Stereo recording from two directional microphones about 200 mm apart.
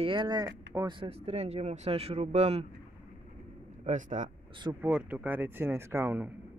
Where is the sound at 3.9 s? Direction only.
35° right (ahead or behind).